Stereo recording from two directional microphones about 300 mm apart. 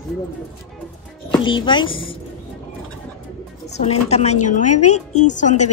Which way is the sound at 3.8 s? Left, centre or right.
Left.